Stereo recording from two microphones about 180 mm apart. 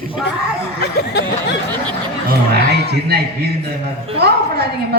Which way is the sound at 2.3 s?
65° right (ahead or behind).